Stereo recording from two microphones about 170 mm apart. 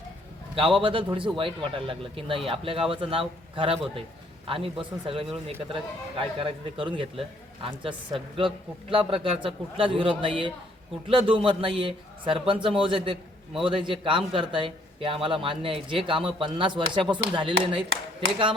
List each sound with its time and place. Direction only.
0.5 s a man's voice: 30° right (ahead or behind)
8.9 s a man's voice: 30° right (ahead or behind)